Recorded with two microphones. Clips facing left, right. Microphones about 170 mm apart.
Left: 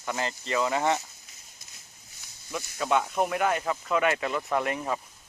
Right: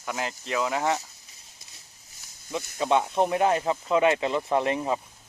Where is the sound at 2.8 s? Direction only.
25° right (ahead or behind).